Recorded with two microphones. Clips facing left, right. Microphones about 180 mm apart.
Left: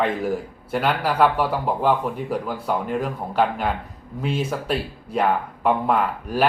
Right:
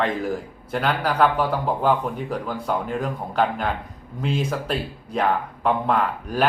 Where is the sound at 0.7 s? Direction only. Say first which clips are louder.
Left 1 dB; 5° left (ahead or behind).